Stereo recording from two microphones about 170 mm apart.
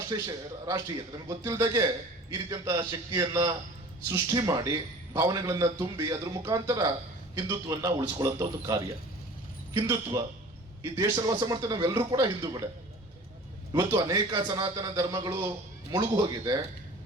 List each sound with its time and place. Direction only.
0.1 s a man's voice: 20° right (ahead or behind)
13.7 s a man's voice: 20° right (ahead or behind)